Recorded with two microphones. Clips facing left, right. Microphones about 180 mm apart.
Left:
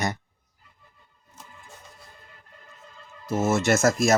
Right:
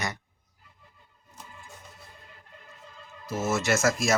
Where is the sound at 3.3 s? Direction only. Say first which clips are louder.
Left 4 dB; 50° left (ahead or behind).